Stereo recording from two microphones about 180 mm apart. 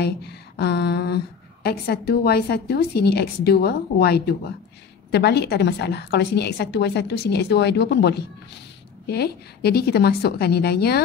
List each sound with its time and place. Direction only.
0.0 s a woman's voice: 65° left (ahead or behind)